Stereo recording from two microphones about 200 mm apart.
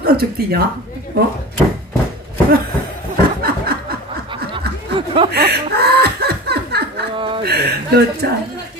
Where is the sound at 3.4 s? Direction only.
50° right (ahead or behind).